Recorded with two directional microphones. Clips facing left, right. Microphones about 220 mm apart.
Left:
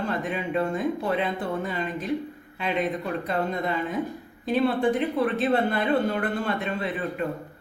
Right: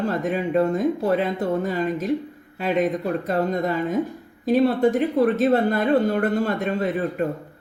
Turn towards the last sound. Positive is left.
turn(degrees=-40)  # may be behind; listen again after turning